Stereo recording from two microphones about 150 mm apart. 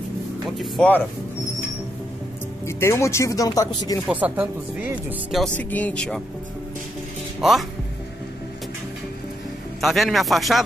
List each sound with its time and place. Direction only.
0.6 s speech: 5° left (ahead or behind)
2.6 s speech: 20° left (ahead or behind)
4.1 s speech: 10° right (ahead or behind)
5.3 s speech: 5° left (ahead or behind)
7.3 s speech: centre (ahead or behind)
9.8 s speech: centre (ahead or behind)